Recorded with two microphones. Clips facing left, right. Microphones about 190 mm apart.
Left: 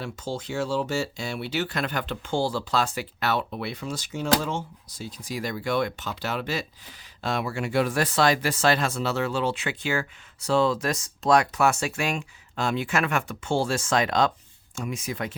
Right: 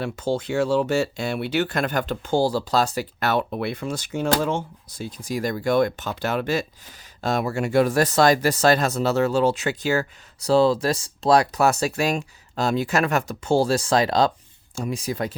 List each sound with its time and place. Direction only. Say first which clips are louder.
0.0 s speech: right 7 dB; 60° right (ahead or behind); by 15.4 s 35° right (ahead or behind)